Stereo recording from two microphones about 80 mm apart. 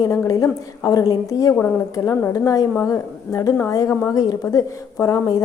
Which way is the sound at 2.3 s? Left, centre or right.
Left.